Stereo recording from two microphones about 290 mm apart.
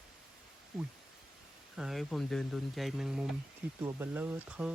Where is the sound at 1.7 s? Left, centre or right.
Centre.